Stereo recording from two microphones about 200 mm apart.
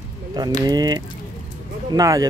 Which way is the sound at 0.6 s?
20° right (ahead or behind).